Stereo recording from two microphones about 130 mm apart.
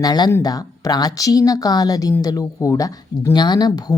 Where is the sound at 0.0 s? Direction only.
30° left (ahead or behind).